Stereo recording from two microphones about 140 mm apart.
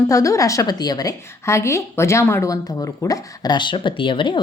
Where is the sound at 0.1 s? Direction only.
25° left (ahead or behind).